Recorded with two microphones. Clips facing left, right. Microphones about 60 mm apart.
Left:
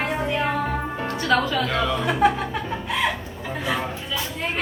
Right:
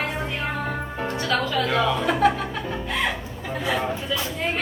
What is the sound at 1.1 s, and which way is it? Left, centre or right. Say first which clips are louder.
Speech: left 3 dB; centre.